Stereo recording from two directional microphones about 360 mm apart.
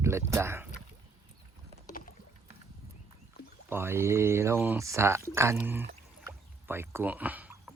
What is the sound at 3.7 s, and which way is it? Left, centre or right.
Speech, centre.